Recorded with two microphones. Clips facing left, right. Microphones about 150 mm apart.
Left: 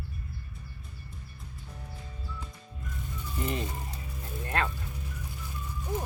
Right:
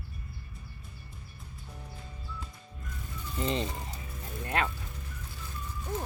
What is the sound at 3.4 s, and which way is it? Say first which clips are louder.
Speech: right 2 dB; 25° right (ahead or behind).